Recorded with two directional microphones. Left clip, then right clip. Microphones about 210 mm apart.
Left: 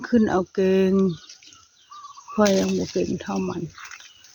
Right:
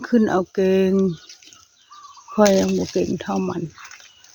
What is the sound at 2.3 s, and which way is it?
Speech, 20° right (ahead or behind).